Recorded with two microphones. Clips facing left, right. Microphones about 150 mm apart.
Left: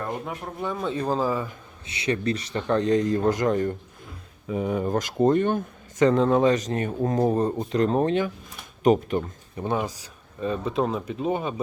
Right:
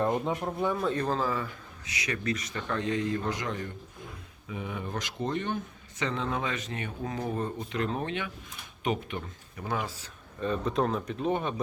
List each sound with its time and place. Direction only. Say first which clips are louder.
0.0 s a sound: right 3 dB; 20° right (ahead or behind)
0.4 s speech: right 1 dB; 10° right (ahead or behind)
0.8 s speech: left 1 dB; centre (ahead or behind)
1.0 s speech: left 5 dB; 10° left (ahead or behind)
1.9 s speech: left 7 dB; 30° left (ahead or behind)
9.6 s speech: left 6 dB; 20° left (ahead or behind)
10.4 s speech: left 3 dB; 5° left (ahead or behind)